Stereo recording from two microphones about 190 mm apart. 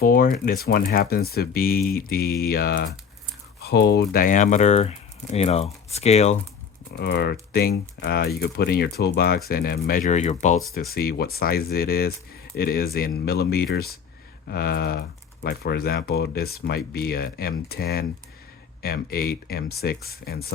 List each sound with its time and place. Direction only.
0.0 s speech: 50° left (ahead or behind)
6.9 s speech: 55° left (ahead or behind); by 10.6 s 40° left (ahead or behind)
10.8 s speech: 50° left (ahead or behind)